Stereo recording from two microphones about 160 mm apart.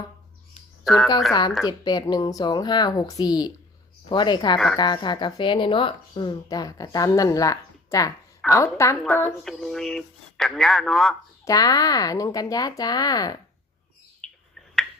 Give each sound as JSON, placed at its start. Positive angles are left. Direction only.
{"t": 0.9, "sound": "speech", "side_deg": 0}
{"t": 1.3, "sound": "a woman's voice", "side_deg": 25}
{"t": 4.5, "sound": "speech", "side_deg": 0}
{"t": 4.8, "sound": "a woman's voice", "side_deg": 30}
{"t": 9.4, "sound": "speech", "side_deg": 0}
{"t": 11.4, "sound": "a woman's voice", "side_deg": 25}
{"t": 14.2, "sound": "bird", "side_deg": 5}